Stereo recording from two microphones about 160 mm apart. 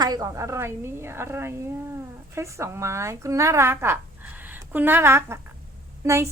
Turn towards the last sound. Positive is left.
turn(degrees=-15)  # may be behind; listen again after turning